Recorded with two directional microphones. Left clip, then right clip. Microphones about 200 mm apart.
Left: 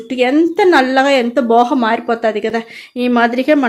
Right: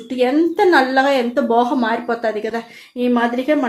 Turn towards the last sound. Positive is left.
turn(degrees=45)  # may be behind; listen again after turning